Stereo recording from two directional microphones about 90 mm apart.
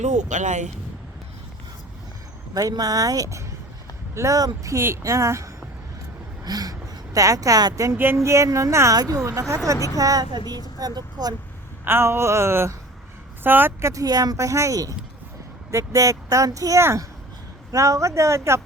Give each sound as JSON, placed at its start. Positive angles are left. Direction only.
{"t": 2.6, "sound": "speech", "side_deg": -45}
{"t": 6.4, "sound": "speech", "side_deg": -45}
{"t": 7.9, "sound": "speech", "side_deg": -30}
{"t": 11.9, "sound": "a sound", "side_deg": -25}
{"t": 13.9, "sound": "speech", "side_deg": -40}